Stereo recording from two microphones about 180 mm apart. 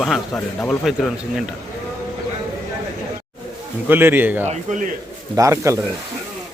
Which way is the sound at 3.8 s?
10° right (ahead or behind).